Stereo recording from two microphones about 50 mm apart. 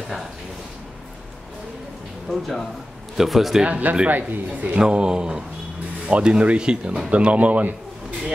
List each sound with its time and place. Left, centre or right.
2.2 s a man's voice: centre
3.6 s speech: right
4.1 s speech: right
4.7 s speech: centre